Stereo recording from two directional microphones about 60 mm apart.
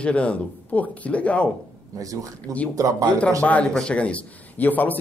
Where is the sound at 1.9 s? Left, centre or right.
Right.